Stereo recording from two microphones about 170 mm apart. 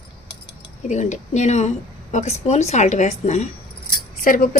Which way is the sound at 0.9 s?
45° left (ahead or behind).